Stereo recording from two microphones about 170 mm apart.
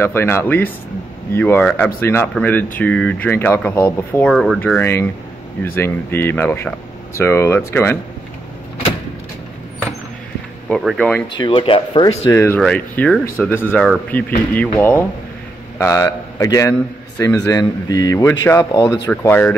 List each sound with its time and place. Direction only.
0.0 s speech: 15° left (ahead or behind)
4.3 s speech: centre (ahead or behind)
4.6 s speech: 10° left (ahead or behind)
10.7 s speech: centre (ahead or behind)
11.3 s speech: 30° left (ahead or behind)
12.3 s a man's voice: 15° left (ahead or behind)